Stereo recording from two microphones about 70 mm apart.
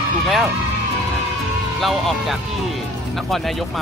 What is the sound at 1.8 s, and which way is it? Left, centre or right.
Speech, centre.